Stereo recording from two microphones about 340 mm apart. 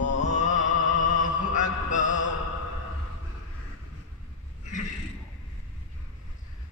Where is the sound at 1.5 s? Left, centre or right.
Left.